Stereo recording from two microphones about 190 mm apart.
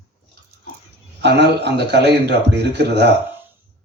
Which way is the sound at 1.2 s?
60° right (ahead or behind).